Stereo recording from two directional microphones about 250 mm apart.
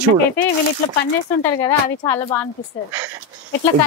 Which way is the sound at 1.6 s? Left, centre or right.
Centre.